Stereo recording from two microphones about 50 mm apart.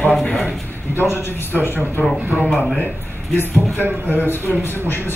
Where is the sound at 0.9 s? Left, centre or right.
Left.